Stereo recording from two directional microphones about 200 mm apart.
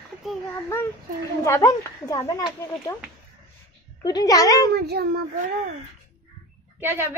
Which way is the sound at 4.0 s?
20° left (ahead or behind).